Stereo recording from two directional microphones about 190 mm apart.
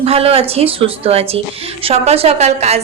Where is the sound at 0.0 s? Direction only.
30° right (ahead or behind).